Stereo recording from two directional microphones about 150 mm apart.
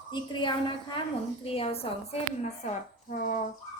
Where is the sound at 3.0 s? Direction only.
70° left (ahead or behind).